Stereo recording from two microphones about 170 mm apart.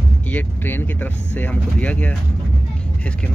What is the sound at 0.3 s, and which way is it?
Speech, 10° left (ahead or behind).